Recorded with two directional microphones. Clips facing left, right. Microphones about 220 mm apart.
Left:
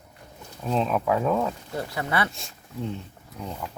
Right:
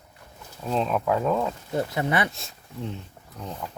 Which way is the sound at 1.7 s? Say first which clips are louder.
Right 4 dB; 20° right (ahead or behind).